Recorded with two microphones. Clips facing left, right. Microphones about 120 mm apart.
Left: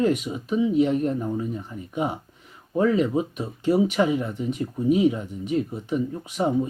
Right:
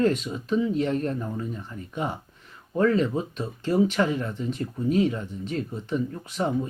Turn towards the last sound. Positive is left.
turn(degrees=15)  # may be behind; listen again after turning